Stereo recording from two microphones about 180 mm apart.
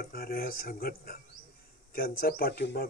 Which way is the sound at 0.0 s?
55° left (ahead or behind).